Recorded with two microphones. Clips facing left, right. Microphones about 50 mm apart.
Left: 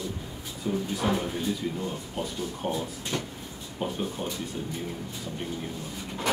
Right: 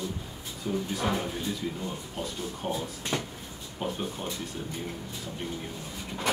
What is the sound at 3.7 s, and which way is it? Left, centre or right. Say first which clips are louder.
Speech: left 1 dB; centre.